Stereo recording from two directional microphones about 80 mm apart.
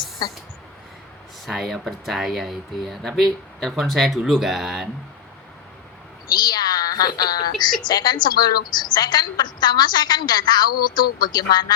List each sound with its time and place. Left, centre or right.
0.2 s a woman's voice: left
1.5 s speech: centre
6.3 s a sound: left
7.8 s a woman's voice: left